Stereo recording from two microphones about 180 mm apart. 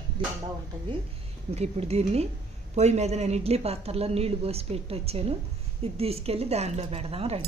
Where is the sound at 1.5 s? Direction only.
35° right (ahead or behind).